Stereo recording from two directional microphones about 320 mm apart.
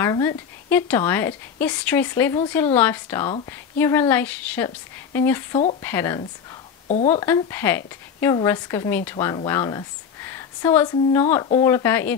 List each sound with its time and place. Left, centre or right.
0.0 s a woman's voice: centre
6.9 s speech: left
7.2 s a woman's voice: centre
11.7 s a woman's voice: centre